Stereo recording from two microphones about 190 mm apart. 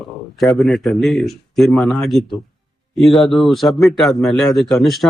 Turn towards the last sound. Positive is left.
turn(degrees=0)  # may be behind; listen again after turning